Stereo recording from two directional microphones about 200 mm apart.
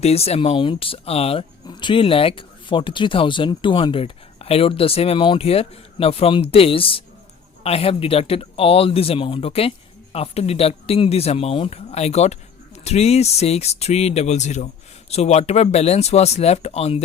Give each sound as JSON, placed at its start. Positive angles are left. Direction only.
{"t": 0.0, "sound": "speech", "side_deg": 30}